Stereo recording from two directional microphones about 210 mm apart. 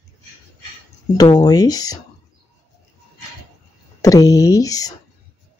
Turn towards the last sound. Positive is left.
turn(degrees=15)  # may be behind; listen again after turning